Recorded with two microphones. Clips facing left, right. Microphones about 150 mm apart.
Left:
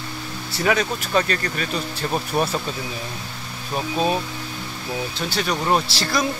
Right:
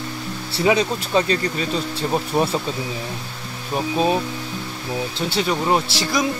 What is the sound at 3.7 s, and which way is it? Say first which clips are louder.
Speech: right 2 dB; 20° right (ahead or behind).